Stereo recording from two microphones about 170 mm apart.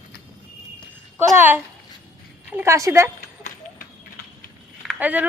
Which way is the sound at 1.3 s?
10° right (ahead or behind).